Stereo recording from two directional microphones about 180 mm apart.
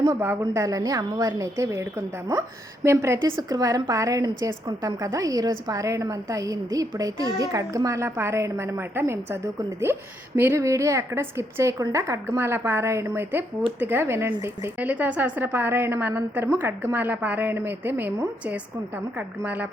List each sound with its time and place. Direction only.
0.0 s a woman's voice: 15° right (ahead or behind)